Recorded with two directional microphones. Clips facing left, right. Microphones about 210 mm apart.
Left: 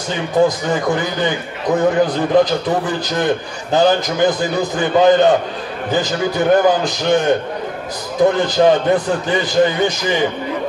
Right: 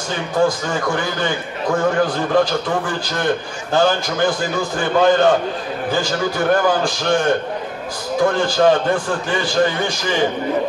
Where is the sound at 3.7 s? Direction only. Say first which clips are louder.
Left 3 dB; 20° left (ahead or behind).